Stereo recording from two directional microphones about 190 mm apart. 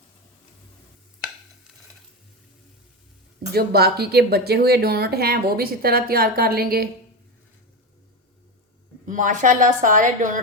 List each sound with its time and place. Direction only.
3.5 s speech: 55° right (ahead or behind)
9.0 s a woman's voice: 40° right (ahead or behind)